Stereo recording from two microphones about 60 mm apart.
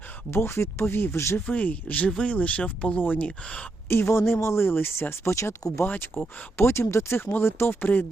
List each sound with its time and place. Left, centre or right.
0.3 s speech: left
1.5 s speech: left
3.2 s speech: centre
3.8 s speech: left
5.8 s speech: left
6.6 s speech: left